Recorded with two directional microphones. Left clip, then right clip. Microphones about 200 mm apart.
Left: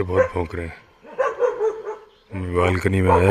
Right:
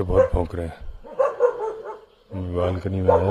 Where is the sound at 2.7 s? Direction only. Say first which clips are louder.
Right 2 dB; 10° left (ahead or behind).